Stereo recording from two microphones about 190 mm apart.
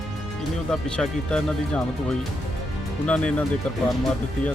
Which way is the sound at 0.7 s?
5° left (ahead or behind).